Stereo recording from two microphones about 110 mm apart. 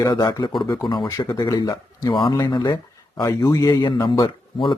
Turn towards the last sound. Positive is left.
turn(degrees=45)  # may be behind; listen again after turning